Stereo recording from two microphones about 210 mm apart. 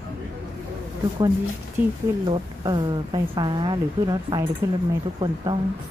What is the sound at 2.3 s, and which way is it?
A woman's voice, 20° right (ahead or behind).